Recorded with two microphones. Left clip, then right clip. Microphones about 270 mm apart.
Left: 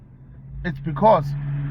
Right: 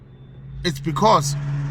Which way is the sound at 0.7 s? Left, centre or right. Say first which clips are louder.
Even; right.